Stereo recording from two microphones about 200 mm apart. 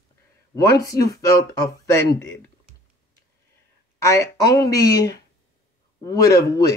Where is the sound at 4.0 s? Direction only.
15° left (ahead or behind).